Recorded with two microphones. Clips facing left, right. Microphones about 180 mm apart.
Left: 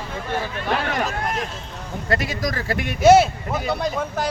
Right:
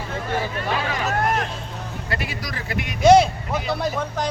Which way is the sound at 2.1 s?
45° left (ahead or behind).